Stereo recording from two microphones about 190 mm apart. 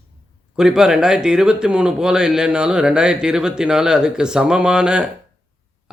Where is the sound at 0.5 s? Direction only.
5° right (ahead or behind).